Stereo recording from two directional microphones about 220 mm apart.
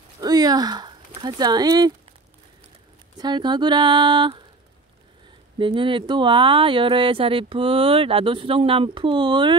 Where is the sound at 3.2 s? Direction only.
20° right (ahead or behind).